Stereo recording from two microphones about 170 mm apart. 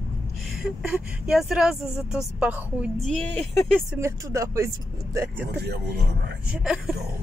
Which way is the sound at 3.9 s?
15° right (ahead or behind).